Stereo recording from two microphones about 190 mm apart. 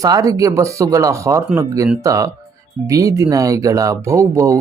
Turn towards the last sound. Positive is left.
turn(degrees=-15)  # may be behind; listen again after turning